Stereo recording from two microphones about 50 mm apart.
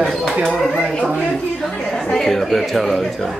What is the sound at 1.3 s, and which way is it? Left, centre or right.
Speech, centre.